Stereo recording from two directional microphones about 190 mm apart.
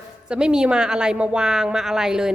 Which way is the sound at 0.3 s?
5° right (ahead or behind).